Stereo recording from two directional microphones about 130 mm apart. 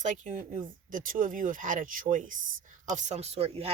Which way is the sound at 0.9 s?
90° right.